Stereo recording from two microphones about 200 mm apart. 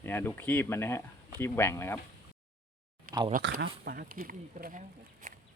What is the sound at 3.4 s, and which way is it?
Speech, 60° right (ahead or behind).